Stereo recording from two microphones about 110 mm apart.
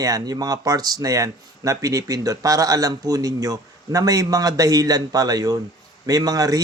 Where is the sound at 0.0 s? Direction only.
35° right (ahead or behind).